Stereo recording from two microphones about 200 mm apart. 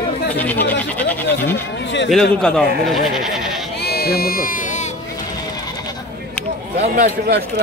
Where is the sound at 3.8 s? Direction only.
55° left (ahead or behind); by 4.9 s 40° left (ahead or behind).